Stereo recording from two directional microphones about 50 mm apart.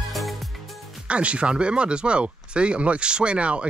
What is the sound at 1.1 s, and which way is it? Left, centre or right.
Speech, right.